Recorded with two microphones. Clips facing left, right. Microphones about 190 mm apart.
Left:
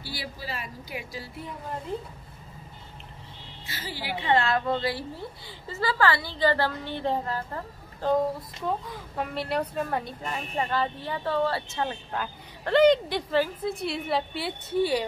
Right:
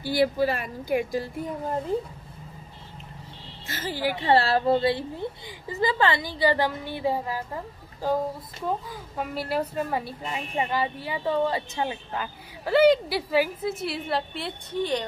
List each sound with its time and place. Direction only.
0.0 s speech: 55° right (ahead or behind)
3.6 s a woman's voice: 45° right (ahead or behind); by 12.0 s 15° right (ahead or behind)
12.1 s a woman's voice: 5° right (ahead or behind)